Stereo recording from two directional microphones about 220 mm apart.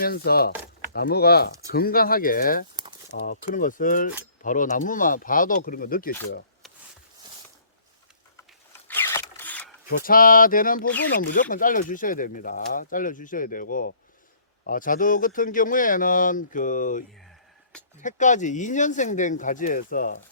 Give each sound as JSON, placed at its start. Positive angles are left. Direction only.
{"t": 0.0, "sound": "speech", "side_deg": 45}
{"t": 8.9, "sound": "a sound", "side_deg": 10}
{"t": 10.0, "sound": "speech", "side_deg": 40}
{"t": 18.0, "sound": "speech", "side_deg": 35}